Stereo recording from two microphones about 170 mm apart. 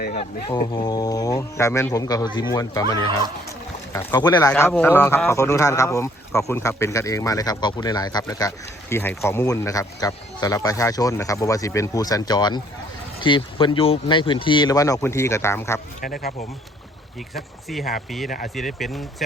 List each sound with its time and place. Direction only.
0.4 s speech: 30° left (ahead or behind)
3.9 s speech: 20° left (ahead or behind)
16.0 s speech: 60° left (ahead or behind)
17.3 s speech: centre (ahead or behind)
18.3 s speech: 60° left (ahead or behind)
18.5 s speech: centre (ahead or behind)